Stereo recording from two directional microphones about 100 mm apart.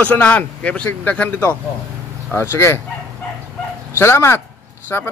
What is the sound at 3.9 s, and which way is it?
Speech, 25° left (ahead or behind).